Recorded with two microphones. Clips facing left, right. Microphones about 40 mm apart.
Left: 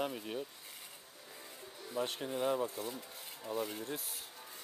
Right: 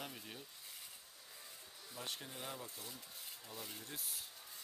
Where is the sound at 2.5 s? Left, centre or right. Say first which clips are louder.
Left 14 dB; left.